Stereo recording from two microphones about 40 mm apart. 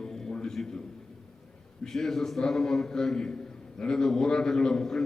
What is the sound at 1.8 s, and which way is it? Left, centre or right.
A man's voice, centre.